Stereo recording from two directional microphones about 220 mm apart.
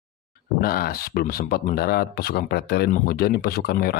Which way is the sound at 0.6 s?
45° left (ahead or behind).